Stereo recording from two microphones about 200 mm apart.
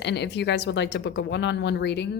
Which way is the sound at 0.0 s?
60° left (ahead or behind).